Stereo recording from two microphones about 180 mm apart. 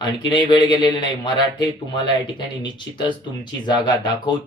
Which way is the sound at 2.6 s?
25° left (ahead or behind).